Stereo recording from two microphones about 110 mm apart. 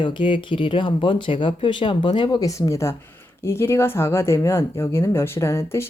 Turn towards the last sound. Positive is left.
turn(degrees=25)  # may be behind; listen again after turning